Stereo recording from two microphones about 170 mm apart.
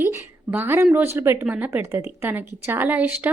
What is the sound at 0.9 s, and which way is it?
Speech, 10° right (ahead or behind).